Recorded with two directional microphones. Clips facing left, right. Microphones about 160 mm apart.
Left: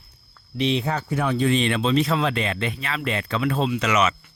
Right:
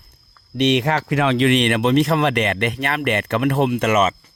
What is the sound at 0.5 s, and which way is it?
Speech, 75° right (ahead or behind).